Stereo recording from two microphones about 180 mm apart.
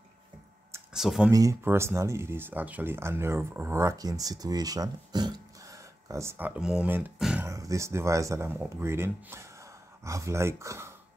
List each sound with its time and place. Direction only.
0.9 s speech: centre (ahead or behind)
1.3 s speech: 20° right (ahead or behind)
7.4 s speech: 15° right (ahead or behind)